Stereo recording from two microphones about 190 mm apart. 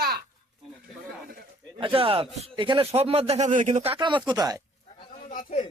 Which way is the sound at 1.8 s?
30° right (ahead or behind).